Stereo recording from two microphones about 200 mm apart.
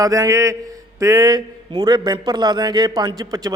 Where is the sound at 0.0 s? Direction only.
15° right (ahead or behind).